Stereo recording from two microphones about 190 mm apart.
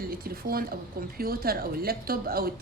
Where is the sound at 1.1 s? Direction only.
50° right (ahead or behind).